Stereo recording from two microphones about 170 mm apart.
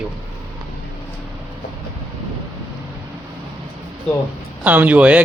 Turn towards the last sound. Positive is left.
turn(degrees=-10)  # may be behind; listen again after turning